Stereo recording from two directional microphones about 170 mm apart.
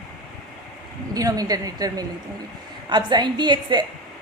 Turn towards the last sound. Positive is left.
turn(degrees=-25)  # may be behind; listen again after turning